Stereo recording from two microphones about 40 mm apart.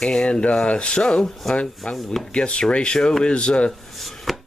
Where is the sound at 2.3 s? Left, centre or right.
Left.